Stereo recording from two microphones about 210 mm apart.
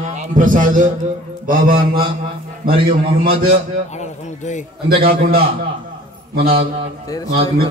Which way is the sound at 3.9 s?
35° left (ahead or behind).